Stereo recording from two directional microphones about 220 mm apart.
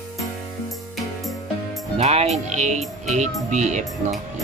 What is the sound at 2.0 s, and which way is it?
Speech, 30° right (ahead or behind).